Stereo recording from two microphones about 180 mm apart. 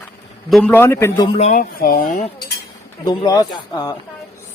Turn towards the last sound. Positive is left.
turn(degrees=20)  # may be behind; listen again after turning